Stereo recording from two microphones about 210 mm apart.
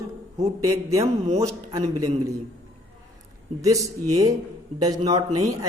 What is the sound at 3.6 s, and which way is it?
Speech, 15° right (ahead or behind).